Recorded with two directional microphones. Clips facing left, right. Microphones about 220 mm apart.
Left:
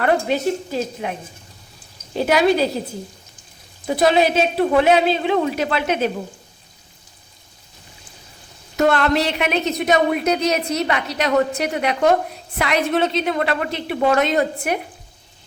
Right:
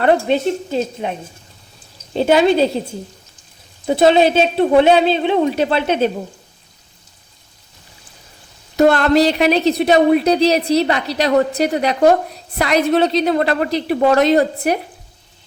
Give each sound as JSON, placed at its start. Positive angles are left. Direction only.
{"t": 0.0, "sound": "speech", "side_deg": -25}
{"t": 2.1, "sound": "speech", "side_deg": -25}
{"t": 3.8, "sound": "speech", "side_deg": -25}
{"t": 8.7, "sound": "a woman's voice", "side_deg": -35}